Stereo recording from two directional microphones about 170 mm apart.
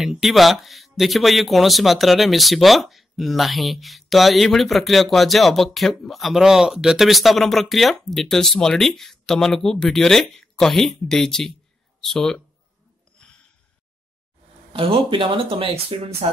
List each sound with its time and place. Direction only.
0.0 s speech: centre (ahead or behind)
13.2 s gasp: 5° left (ahead or behind)
14.7 s speech: 30° right (ahead or behind)